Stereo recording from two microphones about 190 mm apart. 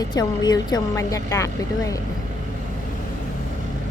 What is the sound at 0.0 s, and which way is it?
Speech, 20° left (ahead or behind).